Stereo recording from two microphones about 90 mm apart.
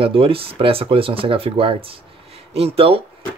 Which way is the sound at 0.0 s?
90° right.